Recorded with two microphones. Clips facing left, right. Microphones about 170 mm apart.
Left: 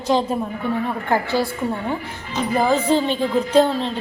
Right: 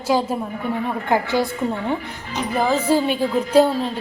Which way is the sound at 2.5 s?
Centre (ahead or behind).